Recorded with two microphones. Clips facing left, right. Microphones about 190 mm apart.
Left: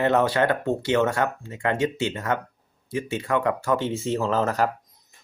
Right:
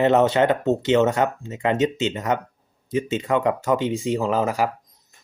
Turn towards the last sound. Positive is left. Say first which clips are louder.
# right 1 dB
turn(degrees=-10)  # may be behind; listen again after turning